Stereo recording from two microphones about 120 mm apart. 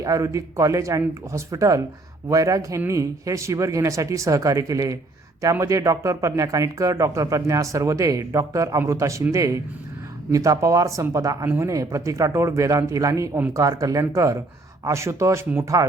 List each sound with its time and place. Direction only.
0.0 s speech: 25° right (ahead or behind)
10.3 s speech: 30° right (ahead or behind)